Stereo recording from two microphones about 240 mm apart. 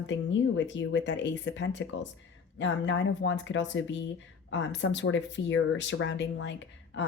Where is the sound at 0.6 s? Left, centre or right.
Left.